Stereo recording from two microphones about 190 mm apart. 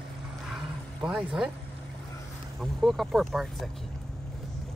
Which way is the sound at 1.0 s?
5° right (ahead or behind).